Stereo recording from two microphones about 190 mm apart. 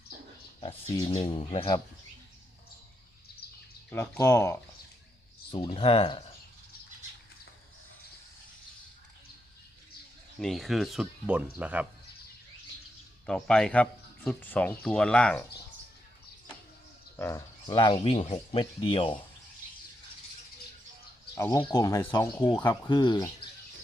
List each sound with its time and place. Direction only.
0.9 s speech: 25° left (ahead or behind)
3.8 s speech: 10° left (ahead or behind)
5.5 s speech: 25° left (ahead or behind)
10.4 s speech: centre (ahead or behind)
13.2 s speech: 5° left (ahead or behind)
17.2 s speech: 10° left (ahead or behind)
17.7 s speech: 25° left (ahead or behind)
21.3 s speech: 15° left (ahead or behind)